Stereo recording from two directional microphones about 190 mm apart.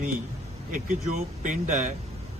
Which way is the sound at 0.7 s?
45° right (ahead or behind).